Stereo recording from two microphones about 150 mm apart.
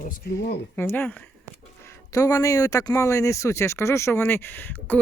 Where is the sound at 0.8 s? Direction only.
15° left (ahead or behind).